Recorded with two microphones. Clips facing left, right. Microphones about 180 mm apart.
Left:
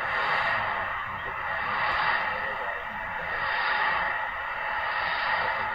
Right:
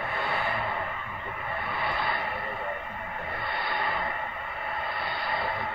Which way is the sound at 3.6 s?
25° right (ahead or behind).